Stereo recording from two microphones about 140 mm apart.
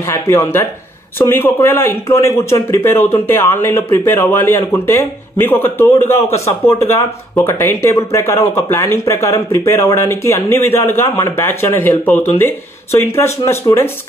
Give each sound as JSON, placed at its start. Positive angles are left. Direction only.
{"t": 0.0, "sound": "speech", "side_deg": 15}
{"t": 3.7, "sound": "speech", "side_deg": 30}
{"t": 4.1, "sound": "speech", "side_deg": 15}